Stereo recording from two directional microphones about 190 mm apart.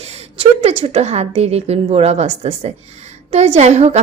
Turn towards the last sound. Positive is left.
turn(degrees=-35)  # may be behind; listen again after turning